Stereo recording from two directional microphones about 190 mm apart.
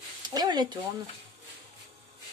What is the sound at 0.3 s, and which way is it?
Speech, 20° right (ahead or behind).